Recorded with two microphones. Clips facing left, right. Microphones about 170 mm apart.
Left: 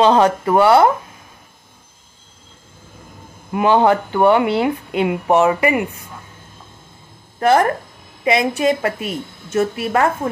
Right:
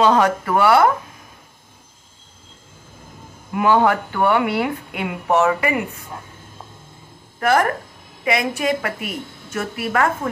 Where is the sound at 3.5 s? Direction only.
25° left (ahead or behind).